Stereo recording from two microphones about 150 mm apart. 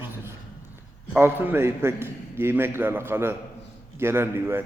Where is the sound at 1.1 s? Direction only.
15° right (ahead or behind).